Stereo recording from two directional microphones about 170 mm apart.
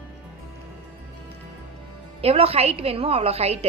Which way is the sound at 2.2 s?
35° right (ahead or behind).